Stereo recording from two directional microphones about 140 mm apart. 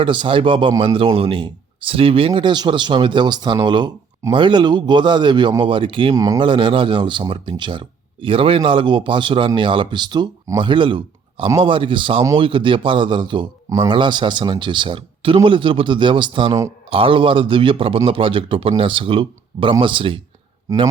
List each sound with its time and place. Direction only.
0.0 s speech: 35° right (ahead or behind)
6.1 s speech: 25° right (ahead or behind)
6.4 s speech: 35° right (ahead or behind)
20.7 s speech: 25° right (ahead or behind)